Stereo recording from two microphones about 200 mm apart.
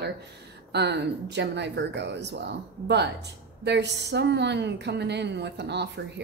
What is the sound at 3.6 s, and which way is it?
A woman's voice, 60° right (ahead or behind).